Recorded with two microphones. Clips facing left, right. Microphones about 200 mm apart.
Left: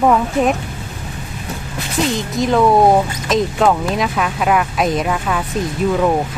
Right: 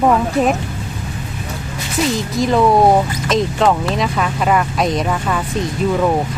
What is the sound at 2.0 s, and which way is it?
Speech, centre (ahead or behind).